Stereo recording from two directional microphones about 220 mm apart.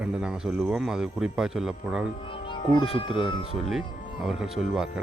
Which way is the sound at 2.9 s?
20° left (ahead or behind).